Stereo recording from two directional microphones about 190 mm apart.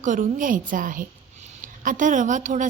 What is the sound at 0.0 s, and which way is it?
Speech, 40° right (ahead or behind).